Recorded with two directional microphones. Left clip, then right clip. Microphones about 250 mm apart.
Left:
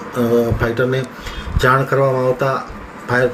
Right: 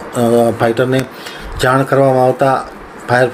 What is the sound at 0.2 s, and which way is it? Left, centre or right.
Speech, centre.